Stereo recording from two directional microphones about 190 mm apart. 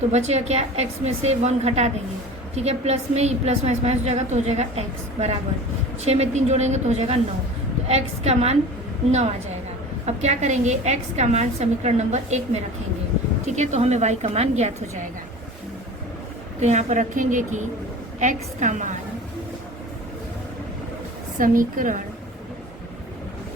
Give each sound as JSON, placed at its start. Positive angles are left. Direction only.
{"t": 0.1, "sound": "a woman's voice", "side_deg": -35}
{"t": 10.1, "sound": "a woman's voice", "side_deg": -35}
{"t": 13.5, "sound": "a woman's voice", "side_deg": -40}
{"t": 16.6, "sound": "a woman's voice", "side_deg": -40}
{"t": 21.3, "sound": "a woman's voice", "side_deg": -45}